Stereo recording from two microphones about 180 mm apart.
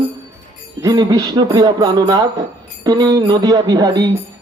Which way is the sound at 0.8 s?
20° right (ahead or behind).